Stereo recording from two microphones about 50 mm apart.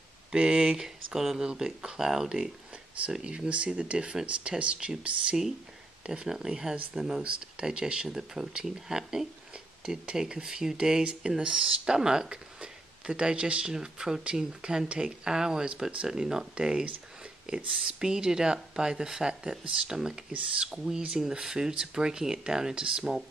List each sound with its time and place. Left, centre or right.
0.3 s speech: centre
3.3 s speech: right
17.8 s speech: centre